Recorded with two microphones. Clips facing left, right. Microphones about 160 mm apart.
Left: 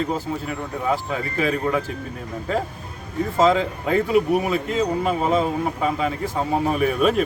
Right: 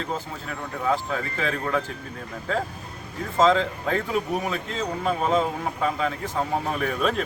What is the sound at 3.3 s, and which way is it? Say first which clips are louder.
Speech: left 1 dB; 10° left (ahead or behind).